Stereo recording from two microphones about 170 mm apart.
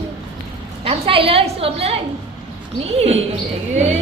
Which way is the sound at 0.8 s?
35° right (ahead or behind).